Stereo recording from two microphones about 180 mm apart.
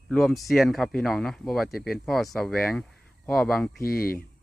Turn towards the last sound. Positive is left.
turn(degrees=55)  # may be behind; listen again after turning